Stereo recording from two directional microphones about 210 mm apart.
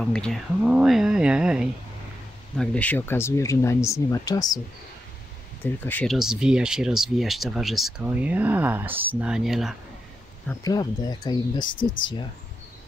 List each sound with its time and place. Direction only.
0.0 s speech: 5° left (ahead or behind)
5.6 s speech: 10° left (ahead or behind)
10.6 s speech: 20° left (ahead or behind)